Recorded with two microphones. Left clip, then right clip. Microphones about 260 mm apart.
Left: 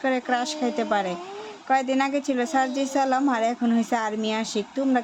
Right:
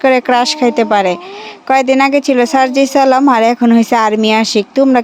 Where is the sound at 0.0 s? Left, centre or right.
Right.